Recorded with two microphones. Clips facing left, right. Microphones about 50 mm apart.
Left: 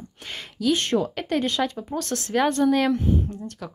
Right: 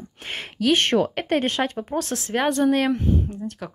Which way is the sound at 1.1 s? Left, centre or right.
Right.